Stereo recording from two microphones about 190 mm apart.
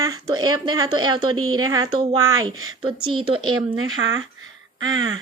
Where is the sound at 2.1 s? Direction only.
90° right.